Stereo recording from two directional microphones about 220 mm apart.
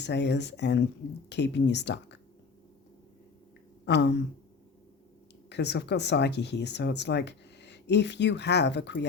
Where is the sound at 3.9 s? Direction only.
50° left (ahead or behind).